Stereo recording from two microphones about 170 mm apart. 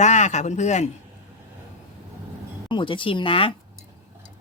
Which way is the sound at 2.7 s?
30° left (ahead or behind).